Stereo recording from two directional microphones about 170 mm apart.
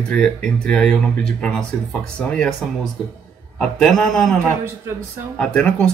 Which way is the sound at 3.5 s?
5° left (ahead or behind).